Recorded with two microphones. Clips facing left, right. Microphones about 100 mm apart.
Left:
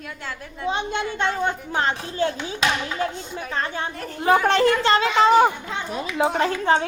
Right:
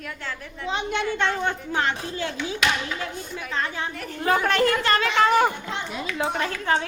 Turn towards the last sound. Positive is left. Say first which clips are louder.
# left 5 dB
turn(degrees=25)  # may be behind; listen again after turning